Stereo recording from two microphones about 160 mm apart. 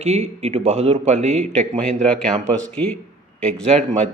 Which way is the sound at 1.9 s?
5° left (ahead or behind).